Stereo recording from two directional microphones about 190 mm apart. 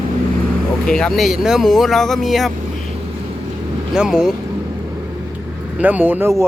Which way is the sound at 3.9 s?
5° right (ahead or behind).